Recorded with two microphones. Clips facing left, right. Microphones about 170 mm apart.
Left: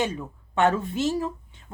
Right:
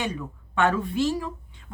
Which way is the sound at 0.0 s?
25° left (ahead or behind).